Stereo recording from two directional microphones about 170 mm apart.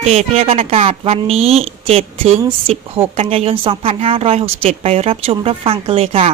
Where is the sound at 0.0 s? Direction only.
40° right (ahead or behind).